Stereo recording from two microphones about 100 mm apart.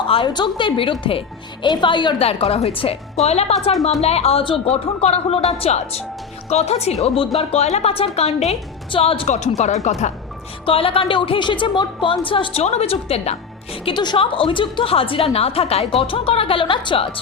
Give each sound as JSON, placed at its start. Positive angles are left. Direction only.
{"t": 0.3, "sound": "a woman's voice", "side_deg": 50}
{"t": 1.6, "sound": "a woman's voice", "side_deg": 50}
{"t": 2.1, "sound": "a woman's voice", "side_deg": 80}
{"t": 3.2, "sound": "a woman's voice", "side_deg": 90}
{"t": 8.9, "sound": "a woman's voice", "side_deg": 70}
{"t": 10.7, "sound": "a woman's voice", "side_deg": 65}
{"t": 13.8, "sound": "a woman's voice", "side_deg": 50}